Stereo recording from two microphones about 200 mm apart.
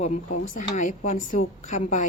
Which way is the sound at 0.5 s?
40° left (ahead or behind).